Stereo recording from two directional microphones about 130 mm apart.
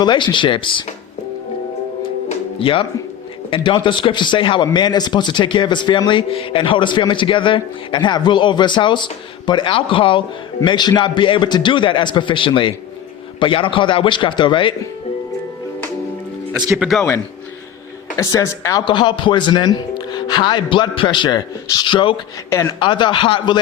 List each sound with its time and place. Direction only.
0.0 s speech: 35° left (ahead or behind)
2.6 s speech: 45° left (ahead or behind)
16.7 s a man's voice: centre (ahead or behind)
18.2 s speech: 25° left (ahead or behind)
18.9 s speech: 35° left (ahead or behind)
22.4 s speech: 20° left (ahead or behind)
22.8 s speech: 35° left (ahead or behind)